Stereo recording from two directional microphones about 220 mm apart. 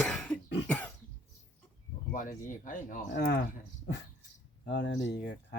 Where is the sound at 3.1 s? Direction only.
50° left (ahead or behind).